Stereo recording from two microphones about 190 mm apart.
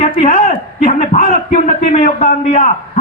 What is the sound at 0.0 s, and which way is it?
A man's voice, 40° left (ahead or behind).